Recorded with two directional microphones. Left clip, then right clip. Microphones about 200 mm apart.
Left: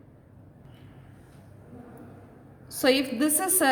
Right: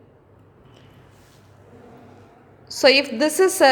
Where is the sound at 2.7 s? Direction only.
25° right (ahead or behind).